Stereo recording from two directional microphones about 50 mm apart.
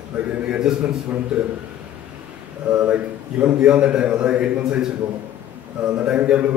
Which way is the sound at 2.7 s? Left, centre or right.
Right.